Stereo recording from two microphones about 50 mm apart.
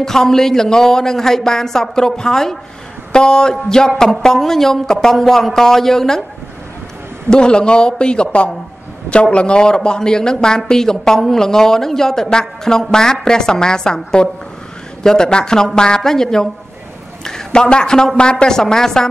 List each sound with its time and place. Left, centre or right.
0.0 s a man's voice: centre
3.1 s a sound: centre
4.2 s a man's voice: centre
7.2 s a man's voice: centre
18.6 s a man's voice: centre